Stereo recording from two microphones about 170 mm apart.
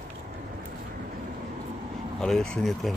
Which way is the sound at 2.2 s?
5° left (ahead or behind).